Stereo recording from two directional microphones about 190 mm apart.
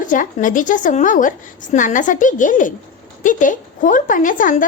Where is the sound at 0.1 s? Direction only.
45° left (ahead or behind).